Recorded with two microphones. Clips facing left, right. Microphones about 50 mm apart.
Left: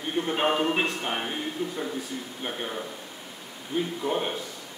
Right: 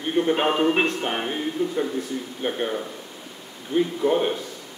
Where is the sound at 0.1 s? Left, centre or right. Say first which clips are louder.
Right 4 dB; centre.